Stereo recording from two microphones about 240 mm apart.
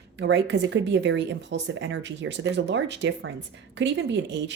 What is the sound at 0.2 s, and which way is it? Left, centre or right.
Speech, right.